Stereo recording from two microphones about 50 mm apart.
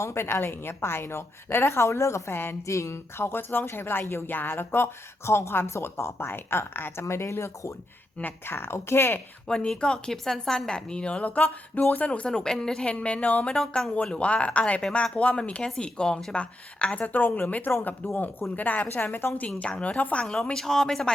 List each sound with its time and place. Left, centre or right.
0.0 s a woman's voice: left
2.6 s a sound: left
3.2 s speech: left
7.0 s speech: left
8.2 s speech: left
9.5 s a woman's voice: centre; by 12.0 s left
12.0 s a woman's voice: left
18.5 s a woman's voice: left
19.6 s a woman's voice: left
20.2 s a woman's voice: centre